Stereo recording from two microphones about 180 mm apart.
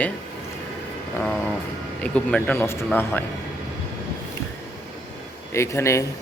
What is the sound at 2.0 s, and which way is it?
Speech, 5° left (ahead or behind).